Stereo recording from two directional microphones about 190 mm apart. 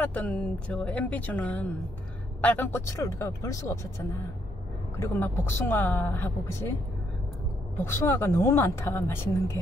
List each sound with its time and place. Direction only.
0.0 s speech: 5° left (ahead or behind)
4.9 s speech: 10° left (ahead or behind)
7.8 s speech: 15° left (ahead or behind)